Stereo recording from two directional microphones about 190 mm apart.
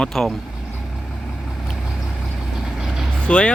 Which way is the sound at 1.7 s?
Centre (ahead or behind).